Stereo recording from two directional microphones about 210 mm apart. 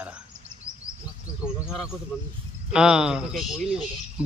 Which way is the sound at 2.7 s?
5° right (ahead or behind).